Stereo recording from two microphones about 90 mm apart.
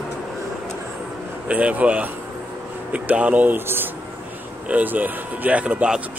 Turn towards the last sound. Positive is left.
turn(degrees=-15)  # may be behind; listen again after turning